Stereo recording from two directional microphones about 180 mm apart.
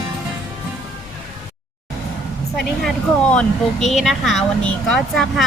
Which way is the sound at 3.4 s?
Centre (ahead or behind).